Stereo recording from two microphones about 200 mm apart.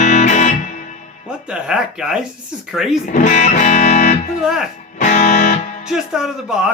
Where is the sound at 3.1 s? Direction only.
40° left (ahead or behind).